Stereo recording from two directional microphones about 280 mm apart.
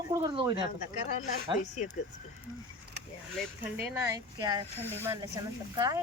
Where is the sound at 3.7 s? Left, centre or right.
Centre.